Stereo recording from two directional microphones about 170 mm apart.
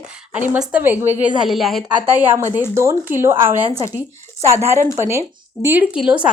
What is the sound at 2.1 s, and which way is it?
A woman's voice, 10° right (ahead or behind).